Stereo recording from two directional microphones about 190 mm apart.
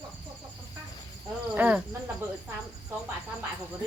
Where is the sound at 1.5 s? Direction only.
10° right (ahead or behind).